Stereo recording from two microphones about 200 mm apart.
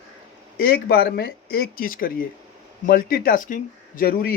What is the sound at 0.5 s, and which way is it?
Speech, 50° left (ahead or behind).